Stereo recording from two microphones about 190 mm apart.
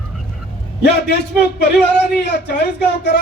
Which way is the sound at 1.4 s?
60° left (ahead or behind).